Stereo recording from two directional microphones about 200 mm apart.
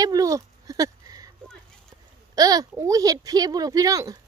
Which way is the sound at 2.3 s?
20° right (ahead or behind).